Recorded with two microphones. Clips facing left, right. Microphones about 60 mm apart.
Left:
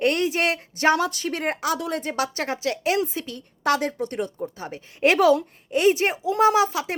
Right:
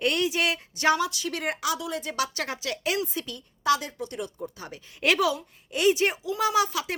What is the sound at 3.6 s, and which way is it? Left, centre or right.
A woman's voice, left.